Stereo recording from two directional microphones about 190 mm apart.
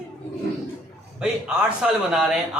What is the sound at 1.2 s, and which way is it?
A man's voice, 5° right (ahead or behind).